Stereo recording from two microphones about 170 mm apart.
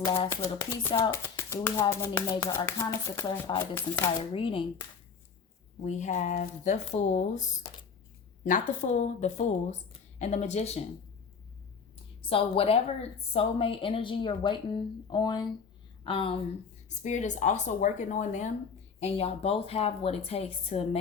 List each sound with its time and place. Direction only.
0.3 s speech: 15° left (ahead or behind)
4.2 s a woman's voice: 30° left (ahead or behind)
5.8 s a woman's voice: 45° left (ahead or behind)
12.2 s a woman's voice: 35° left (ahead or behind)
17.0 s a woman's voice: 45° left (ahead or behind)